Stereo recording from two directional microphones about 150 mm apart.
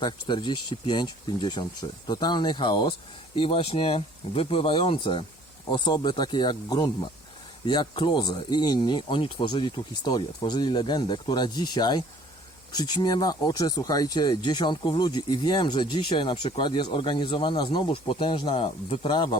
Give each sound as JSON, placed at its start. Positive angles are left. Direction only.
{"t": 0.0, "sound": "speech", "side_deg": 30}